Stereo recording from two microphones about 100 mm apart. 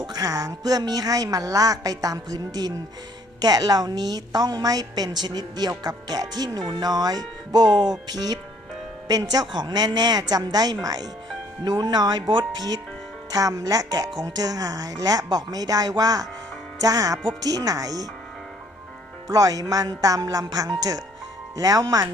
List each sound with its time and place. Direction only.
0.0 s a woman's voice: 40° right (ahead or behind)
19.3 s a woman's voice: 40° right (ahead or behind)